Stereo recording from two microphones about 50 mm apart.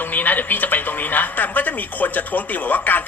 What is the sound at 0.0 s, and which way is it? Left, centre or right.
A woman's voice, left.